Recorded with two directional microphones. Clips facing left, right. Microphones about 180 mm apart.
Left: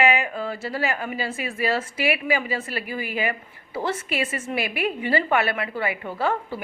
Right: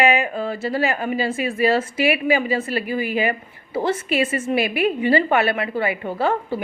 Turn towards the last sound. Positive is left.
turn(degrees=-25)  # may be behind; listen again after turning